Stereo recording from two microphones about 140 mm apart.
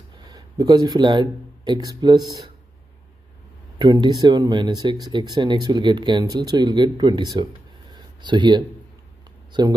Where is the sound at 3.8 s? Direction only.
30° right (ahead or behind).